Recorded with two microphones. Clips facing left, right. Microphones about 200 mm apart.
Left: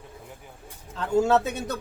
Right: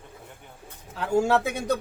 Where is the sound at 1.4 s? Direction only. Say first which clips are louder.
Right 4 dB; 10° right (ahead or behind).